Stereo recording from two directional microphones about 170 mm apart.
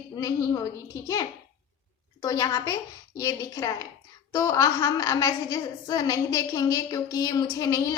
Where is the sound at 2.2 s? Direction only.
20° left (ahead or behind).